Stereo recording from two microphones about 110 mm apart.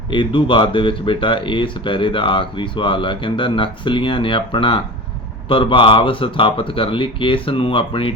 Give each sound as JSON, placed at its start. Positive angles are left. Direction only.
{"t": 0.1, "sound": "speech", "side_deg": 50}